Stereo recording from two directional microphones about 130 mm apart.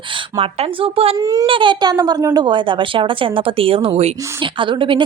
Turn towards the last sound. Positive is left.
turn(degrees=-40)  # may be behind; listen again after turning